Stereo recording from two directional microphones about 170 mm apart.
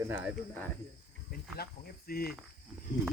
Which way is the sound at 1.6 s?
60° left (ahead or behind).